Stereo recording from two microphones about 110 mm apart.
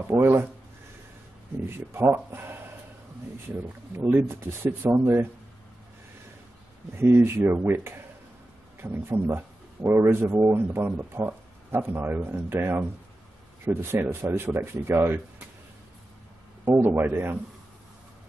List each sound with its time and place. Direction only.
0.1 s a man's voice: 25° right (ahead or behind)
2.0 s a man's voice: 25° right (ahead or behind)
3.9 s a man's voice: 20° right (ahead or behind)
7.3 s a man's voice: 20° right (ahead or behind)
16.6 s a man's voice: 20° right (ahead or behind)